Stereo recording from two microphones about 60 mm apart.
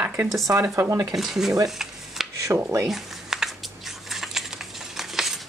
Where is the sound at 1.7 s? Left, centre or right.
Centre.